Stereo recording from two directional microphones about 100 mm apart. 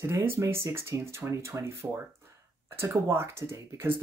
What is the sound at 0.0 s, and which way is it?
Speech, 25° right (ahead or behind).